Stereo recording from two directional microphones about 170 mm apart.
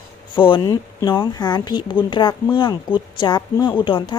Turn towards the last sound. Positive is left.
turn(degrees=30)  # may be behind; listen again after turning